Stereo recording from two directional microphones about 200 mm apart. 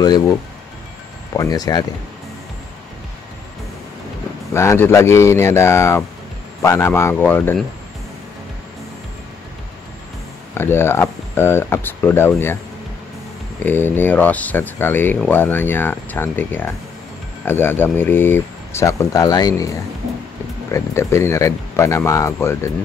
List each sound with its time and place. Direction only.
0.0 s speech: 20° left (ahead or behind)
4.6 s speech: 15° left (ahead or behind)
10.6 s speech: 10° left (ahead or behind)
13.7 s speech: 10° left (ahead or behind)
20.7 s speech: 15° left (ahead or behind)